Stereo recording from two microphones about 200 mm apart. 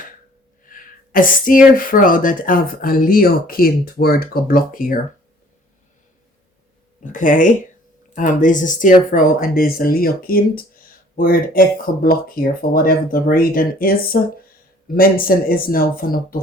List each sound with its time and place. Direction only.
0.7 s speech: 45° left (ahead or behind)
7.0 s speech: 40° left (ahead or behind)